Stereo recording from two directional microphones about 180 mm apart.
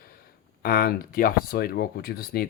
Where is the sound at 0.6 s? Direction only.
55° left (ahead or behind).